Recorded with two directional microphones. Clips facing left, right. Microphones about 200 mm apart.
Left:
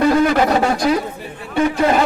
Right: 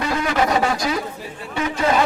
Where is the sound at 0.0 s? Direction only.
45° left (ahead or behind).